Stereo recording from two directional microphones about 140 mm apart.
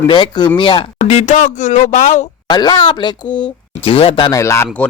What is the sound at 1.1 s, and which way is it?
Speech, 60° left (ahead or behind).